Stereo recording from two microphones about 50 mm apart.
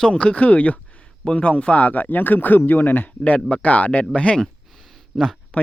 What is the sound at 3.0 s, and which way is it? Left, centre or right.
Speech, left.